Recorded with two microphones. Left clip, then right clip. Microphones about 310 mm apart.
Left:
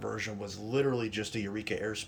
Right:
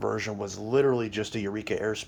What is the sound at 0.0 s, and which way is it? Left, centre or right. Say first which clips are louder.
Speech: right 7 dB; centre.